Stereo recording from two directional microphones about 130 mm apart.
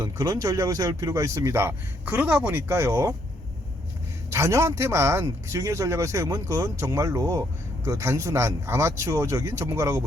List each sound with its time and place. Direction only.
0.0 s speech: 25° right (ahead or behind)
4.3 s speech: 25° right (ahead or behind)